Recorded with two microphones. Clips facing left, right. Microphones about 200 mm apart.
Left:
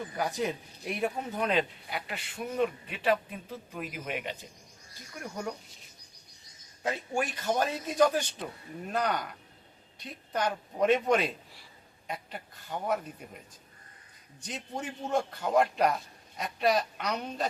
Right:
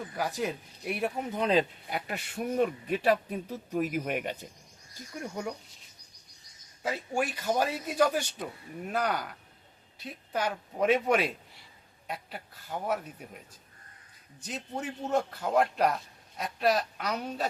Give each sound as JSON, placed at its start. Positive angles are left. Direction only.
{"t": 0.2, "sound": "a man's voice", "side_deg": 0}
{"t": 1.5, "sound": "speech", "side_deg": -40}
{"t": 6.8, "sound": "a man's voice", "side_deg": -5}
{"t": 14.4, "sound": "a man's voice", "side_deg": -5}